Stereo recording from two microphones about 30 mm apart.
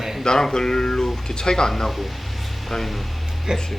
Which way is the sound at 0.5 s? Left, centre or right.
Centre.